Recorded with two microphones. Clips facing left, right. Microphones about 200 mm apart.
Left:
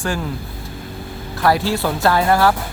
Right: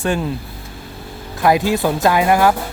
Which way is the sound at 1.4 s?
20° right (ahead or behind).